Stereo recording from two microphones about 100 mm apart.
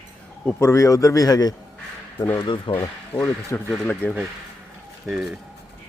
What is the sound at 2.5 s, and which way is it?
Speech, 60° left (ahead or behind).